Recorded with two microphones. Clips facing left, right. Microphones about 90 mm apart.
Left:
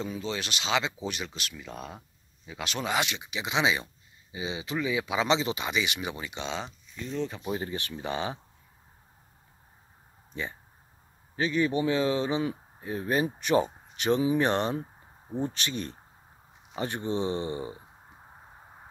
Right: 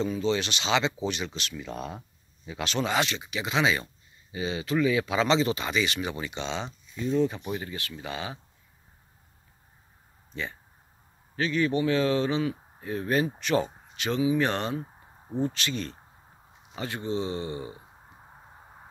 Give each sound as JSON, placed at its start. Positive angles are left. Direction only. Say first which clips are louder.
{"t": 0.0, "sound": "speech", "louder": "right 6 dB", "side_deg": 5}
{"t": 7.0, "sound": "speech", "louder": "right 7 dB", "side_deg": -5}
{"t": 7.4, "sound": "speech", "louder": "left 1 dB", "side_deg": 20}
{"t": 10.3, "sound": "speech", "louder": "even", "side_deg": 20}